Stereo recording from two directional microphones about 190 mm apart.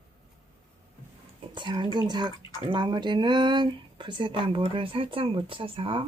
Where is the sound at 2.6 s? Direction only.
25° right (ahead or behind).